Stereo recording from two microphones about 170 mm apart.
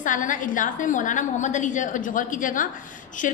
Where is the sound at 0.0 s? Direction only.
50° left (ahead or behind).